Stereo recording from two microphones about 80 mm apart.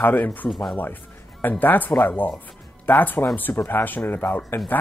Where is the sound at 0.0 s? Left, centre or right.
Left.